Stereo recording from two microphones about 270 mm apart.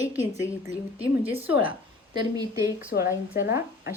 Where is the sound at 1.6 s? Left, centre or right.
Centre.